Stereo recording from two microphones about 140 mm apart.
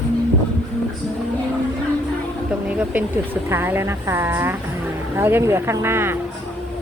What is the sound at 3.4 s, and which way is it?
Speech, 15° right (ahead or behind).